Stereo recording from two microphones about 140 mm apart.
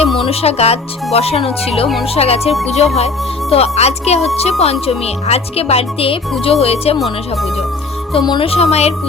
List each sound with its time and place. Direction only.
0.2 s speech: 45° left (ahead or behind)
8.1 s speech: 35° left (ahead or behind)